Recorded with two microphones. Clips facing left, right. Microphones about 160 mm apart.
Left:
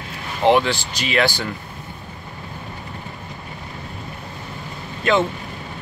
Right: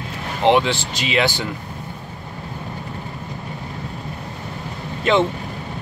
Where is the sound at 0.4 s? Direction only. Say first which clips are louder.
Even; 20° right (ahead or behind).